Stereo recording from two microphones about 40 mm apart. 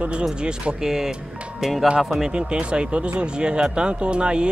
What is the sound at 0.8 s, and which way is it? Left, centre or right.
Speech, centre.